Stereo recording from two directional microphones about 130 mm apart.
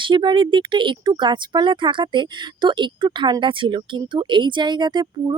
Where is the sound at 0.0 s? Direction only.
35° right (ahead or behind).